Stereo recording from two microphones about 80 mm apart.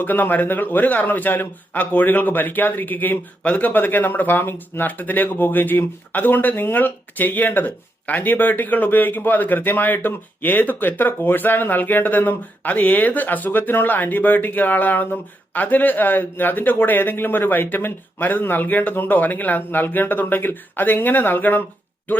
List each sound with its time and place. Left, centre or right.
0.0 s a man's voice: left